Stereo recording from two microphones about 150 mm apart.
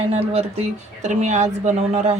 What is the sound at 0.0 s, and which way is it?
A woman's voice, 40° right (ahead or behind).